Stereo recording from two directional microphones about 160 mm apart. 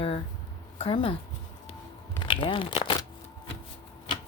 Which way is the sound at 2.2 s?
30° left (ahead or behind).